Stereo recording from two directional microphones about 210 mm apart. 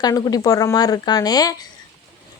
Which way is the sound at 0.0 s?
15° left (ahead or behind).